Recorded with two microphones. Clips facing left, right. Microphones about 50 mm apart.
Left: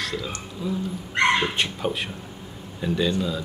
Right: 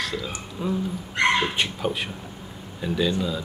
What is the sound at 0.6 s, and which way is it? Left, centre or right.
Speech, right.